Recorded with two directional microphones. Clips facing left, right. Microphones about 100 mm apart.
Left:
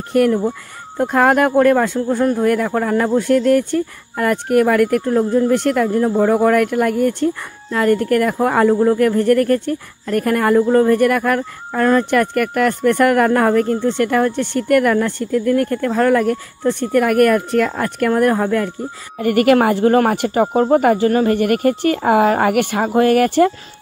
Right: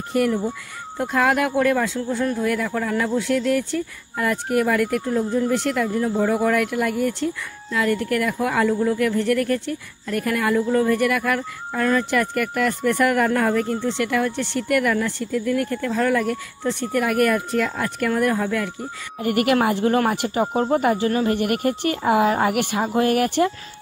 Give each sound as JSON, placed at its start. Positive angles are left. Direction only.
{"t": 0.1, "sound": "speech", "side_deg": 50}